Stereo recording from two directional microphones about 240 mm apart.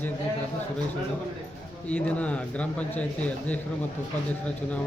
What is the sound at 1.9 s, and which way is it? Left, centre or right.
A man's voice, centre.